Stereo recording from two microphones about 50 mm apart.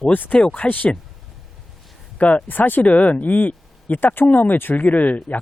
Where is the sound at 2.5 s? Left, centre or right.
Left.